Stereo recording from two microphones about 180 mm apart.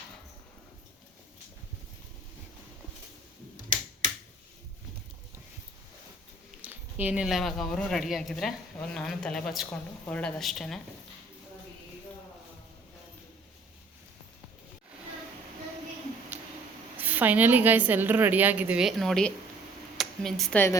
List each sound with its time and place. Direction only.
6.6 s a woman's voice: 10° right (ahead or behind)
17.0 s a woman's voice: 10° right (ahead or behind); by 20.7 s 10° left (ahead or behind)